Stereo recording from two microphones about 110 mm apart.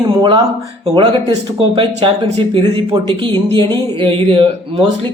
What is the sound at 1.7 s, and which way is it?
Speech, 50° right (ahead or behind).